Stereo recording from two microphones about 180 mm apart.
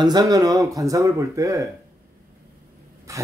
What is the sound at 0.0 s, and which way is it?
A man's voice, 20° right (ahead or behind).